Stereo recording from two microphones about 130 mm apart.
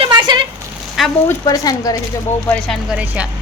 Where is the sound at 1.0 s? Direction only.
Centre (ahead or behind).